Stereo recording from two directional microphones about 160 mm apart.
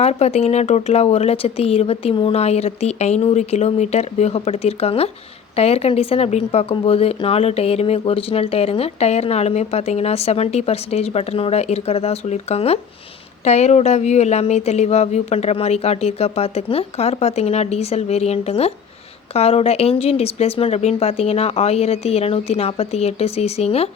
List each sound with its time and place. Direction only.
0.0 s speech: 45° left (ahead or behind)